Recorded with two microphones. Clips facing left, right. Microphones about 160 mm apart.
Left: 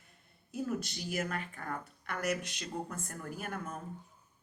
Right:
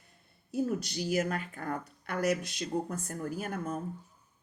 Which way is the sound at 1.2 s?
40° right (ahead or behind).